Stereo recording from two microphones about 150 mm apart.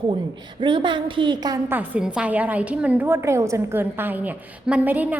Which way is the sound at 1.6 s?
10° right (ahead or behind).